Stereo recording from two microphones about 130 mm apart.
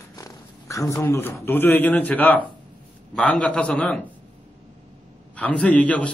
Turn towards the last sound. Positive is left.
turn(degrees=10)  # may be behind; listen again after turning